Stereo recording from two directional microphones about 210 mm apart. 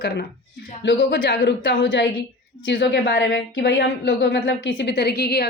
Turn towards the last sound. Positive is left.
turn(degrees=50)  # may be behind; listen again after turning